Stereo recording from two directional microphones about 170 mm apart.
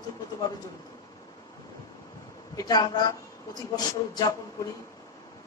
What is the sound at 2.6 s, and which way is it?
Speech, 25° left (ahead or behind).